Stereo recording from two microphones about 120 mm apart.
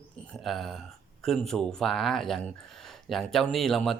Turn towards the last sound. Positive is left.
turn(degrees=5)  # may be behind; listen again after turning